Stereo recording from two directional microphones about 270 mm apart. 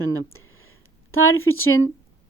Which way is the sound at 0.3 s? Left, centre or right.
Left.